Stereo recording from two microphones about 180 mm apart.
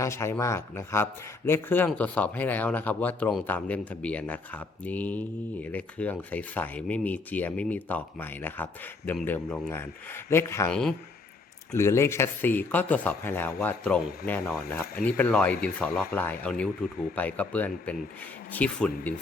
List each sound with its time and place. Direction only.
0.0 s speech: 15° left (ahead or behind)
10.7 s speech: 5° left (ahead or behind)
11.7 s speech: 15° left (ahead or behind)